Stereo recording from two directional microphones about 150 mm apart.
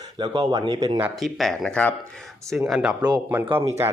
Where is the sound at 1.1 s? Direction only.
Centre (ahead or behind).